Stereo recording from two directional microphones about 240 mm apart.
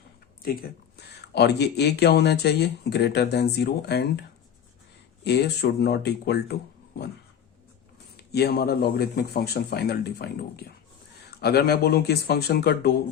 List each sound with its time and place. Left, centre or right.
0.4 s speech: left
8.1 s speech: left